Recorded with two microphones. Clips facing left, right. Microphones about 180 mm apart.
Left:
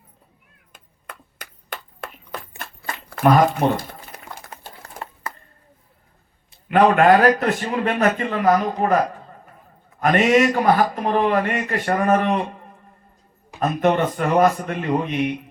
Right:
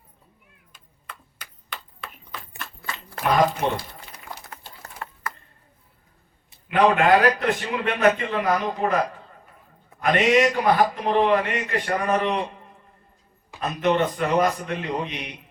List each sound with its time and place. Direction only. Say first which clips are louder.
0.7 s a sound: left 3 dB; 50° left (ahead or behind)
6.7 s a man's voice: left 4 dB; 45° left (ahead or behind)
13.6 s a man's voice: left 3 dB; 50° left (ahead or behind)